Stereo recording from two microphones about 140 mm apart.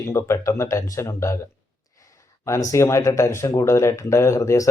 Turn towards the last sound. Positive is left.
turn(degrees=20)  # may be behind; listen again after turning